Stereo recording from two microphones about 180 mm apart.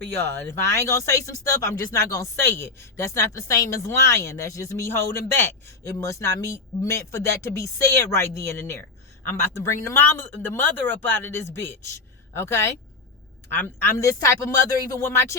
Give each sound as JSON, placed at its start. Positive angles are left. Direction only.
{"t": 0.2, "sound": "speech", "side_deg": 15}